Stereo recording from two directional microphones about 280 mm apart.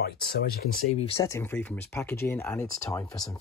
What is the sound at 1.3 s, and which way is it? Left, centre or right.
Speech, centre.